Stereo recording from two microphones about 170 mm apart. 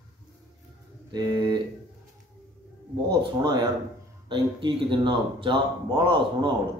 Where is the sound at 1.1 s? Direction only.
25° right (ahead or behind).